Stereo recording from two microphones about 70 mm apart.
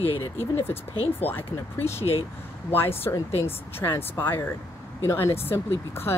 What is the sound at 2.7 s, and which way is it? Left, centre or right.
Speech, left.